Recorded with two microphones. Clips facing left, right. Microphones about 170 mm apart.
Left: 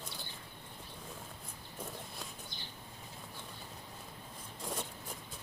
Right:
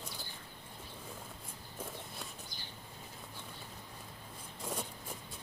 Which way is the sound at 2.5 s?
25° left (ahead or behind).